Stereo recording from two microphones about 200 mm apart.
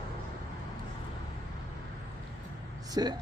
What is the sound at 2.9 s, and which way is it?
Speech, 20° right (ahead or behind).